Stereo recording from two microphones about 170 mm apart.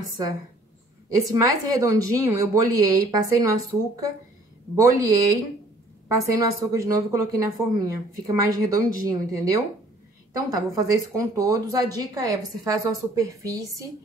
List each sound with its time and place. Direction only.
1.1 s speech: 20° right (ahead or behind)